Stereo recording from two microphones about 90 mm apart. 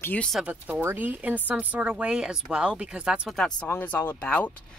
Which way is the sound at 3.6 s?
20° left (ahead or behind).